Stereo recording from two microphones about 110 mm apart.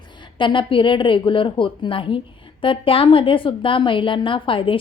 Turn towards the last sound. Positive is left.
turn(degrees=50)  # may be behind; listen again after turning